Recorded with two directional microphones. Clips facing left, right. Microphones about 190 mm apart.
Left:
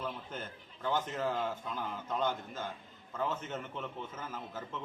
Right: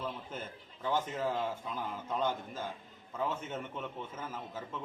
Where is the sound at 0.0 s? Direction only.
5° right (ahead or behind).